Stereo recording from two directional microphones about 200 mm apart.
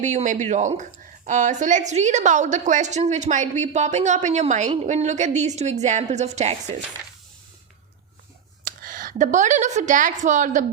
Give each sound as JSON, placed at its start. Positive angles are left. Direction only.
{"t": 0.0, "sound": "a woman's voice", "side_deg": -35}
{"t": 8.6, "sound": "speech", "side_deg": -45}